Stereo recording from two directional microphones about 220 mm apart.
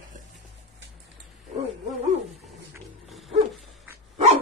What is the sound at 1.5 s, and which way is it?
Dog, 30° right (ahead or behind).